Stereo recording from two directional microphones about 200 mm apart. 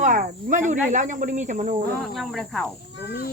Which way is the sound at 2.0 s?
Centre (ahead or behind).